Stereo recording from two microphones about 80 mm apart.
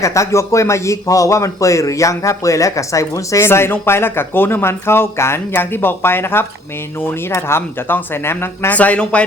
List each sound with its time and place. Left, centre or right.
0.0 s a man's voice: left; by 9.2 s centre